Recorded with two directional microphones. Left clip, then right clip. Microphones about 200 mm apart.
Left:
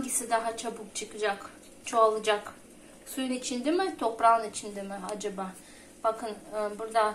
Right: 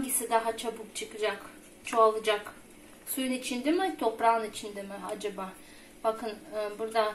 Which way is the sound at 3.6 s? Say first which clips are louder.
Even; centre (ahead or behind).